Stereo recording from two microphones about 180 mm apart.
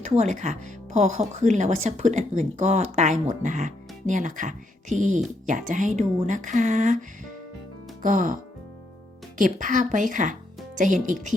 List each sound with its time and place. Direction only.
0.0 s speech: 40° right (ahead or behind)
8.0 s speech: 45° right (ahead or behind)
9.4 s speech: 45° right (ahead or behind)